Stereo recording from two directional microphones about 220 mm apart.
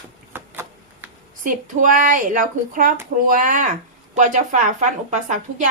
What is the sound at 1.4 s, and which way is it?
A woman's voice, 35° right (ahead or behind).